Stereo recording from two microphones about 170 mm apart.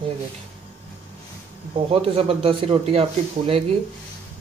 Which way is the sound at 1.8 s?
35° right (ahead or behind).